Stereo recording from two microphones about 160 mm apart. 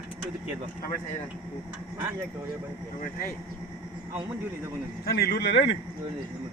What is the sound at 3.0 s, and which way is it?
Speech, 60° left (ahead or behind).